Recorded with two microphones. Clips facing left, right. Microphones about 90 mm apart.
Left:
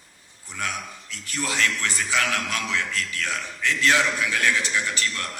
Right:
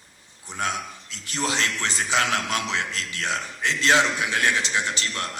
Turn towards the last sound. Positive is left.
turn(degrees=-25)  # may be behind; listen again after turning